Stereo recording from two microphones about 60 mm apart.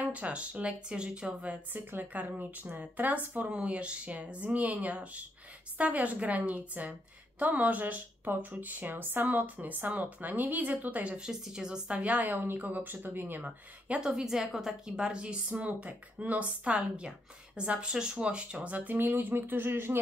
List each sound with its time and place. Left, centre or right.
0.0 s a woman's voice: right
11.2 s a woman's voice: centre
12.0 s speech: right
13.5 s a woman's voice: centre; by 20.0 s right